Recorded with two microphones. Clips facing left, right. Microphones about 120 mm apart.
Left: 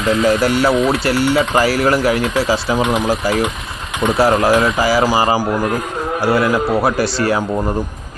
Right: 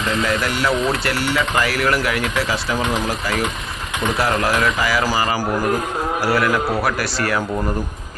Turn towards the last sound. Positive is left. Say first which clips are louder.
# left 5 dB
turn(degrees=25)  # may be behind; listen again after turning